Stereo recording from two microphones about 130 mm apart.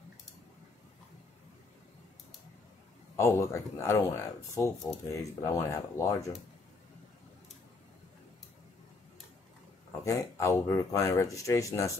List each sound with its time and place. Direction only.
3.2 s speech: 20° left (ahead or behind)
10.0 s speech: 25° left (ahead or behind)